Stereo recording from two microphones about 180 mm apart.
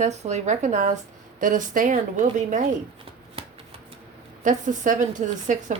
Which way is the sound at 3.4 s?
30° right (ahead or behind).